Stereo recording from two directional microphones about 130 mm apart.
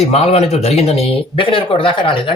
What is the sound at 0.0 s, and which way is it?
Speech, 50° left (ahead or behind).